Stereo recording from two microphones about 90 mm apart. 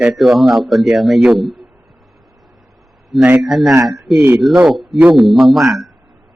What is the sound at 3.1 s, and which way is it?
A man's voice, centre (ahead or behind).